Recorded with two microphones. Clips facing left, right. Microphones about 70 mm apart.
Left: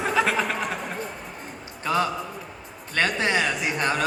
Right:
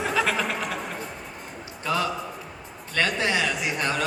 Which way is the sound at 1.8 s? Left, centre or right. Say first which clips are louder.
Left 2 dB; left.